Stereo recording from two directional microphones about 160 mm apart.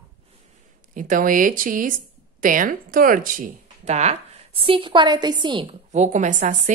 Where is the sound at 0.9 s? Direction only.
55° right (ahead or behind); by 5.8 s 30° right (ahead or behind).